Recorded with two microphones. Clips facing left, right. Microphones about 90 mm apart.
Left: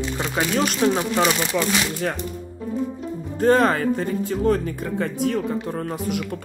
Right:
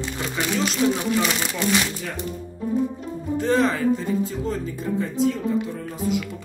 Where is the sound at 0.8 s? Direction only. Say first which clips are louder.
Left 1 dB; 45° left (ahead or behind).